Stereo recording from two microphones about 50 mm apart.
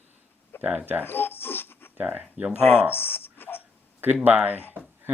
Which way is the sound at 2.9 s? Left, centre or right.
Left.